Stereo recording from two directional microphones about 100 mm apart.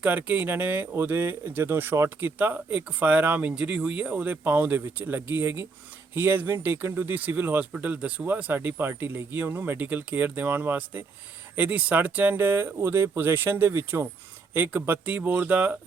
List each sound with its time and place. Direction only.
0.0 s speech: 15° right (ahead or behind)